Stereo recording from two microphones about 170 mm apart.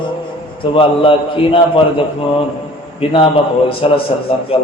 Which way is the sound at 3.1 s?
35° left (ahead or behind).